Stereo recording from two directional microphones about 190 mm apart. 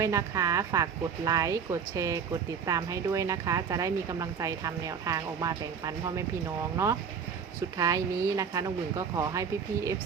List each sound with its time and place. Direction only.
0.0 s speech: 15° right (ahead or behind)
7.8 s speech: 15° right (ahead or behind)